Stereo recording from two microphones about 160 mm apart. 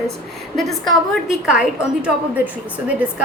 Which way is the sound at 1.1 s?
5° right (ahead or behind).